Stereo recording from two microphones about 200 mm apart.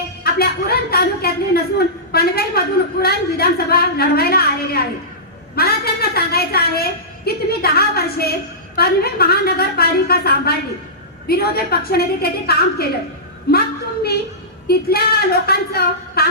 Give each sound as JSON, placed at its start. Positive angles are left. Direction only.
{"t": 0.3, "sound": "a woman's voice", "side_deg": 50}
{"t": 14.7, "sound": "a woman's voice", "side_deg": 50}